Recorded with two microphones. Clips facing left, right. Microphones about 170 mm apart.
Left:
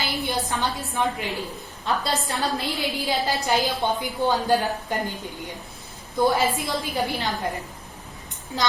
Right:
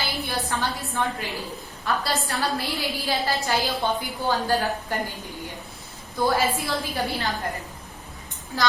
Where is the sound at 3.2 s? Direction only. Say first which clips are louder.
Left 2 dB; 20° left (ahead or behind).